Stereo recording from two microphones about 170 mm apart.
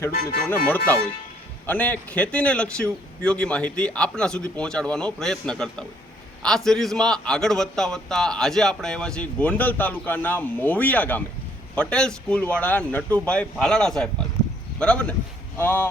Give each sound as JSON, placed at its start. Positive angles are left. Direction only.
{"t": 0.1, "sound": "speech", "side_deg": 60}
{"t": 1.6, "sound": "a man's voice", "side_deg": 10}